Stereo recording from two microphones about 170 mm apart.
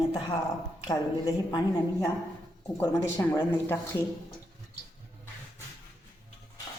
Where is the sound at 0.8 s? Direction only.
25° left (ahead or behind).